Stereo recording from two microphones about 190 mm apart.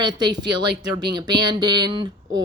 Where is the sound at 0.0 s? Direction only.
20° right (ahead or behind).